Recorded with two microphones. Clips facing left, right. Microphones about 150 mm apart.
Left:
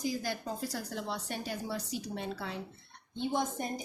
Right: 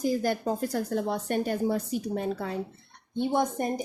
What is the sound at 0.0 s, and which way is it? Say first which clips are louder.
Speech: right 8 dB; 50° right (ahead or behind).